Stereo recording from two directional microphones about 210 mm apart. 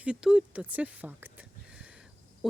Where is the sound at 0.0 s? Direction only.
5° right (ahead or behind).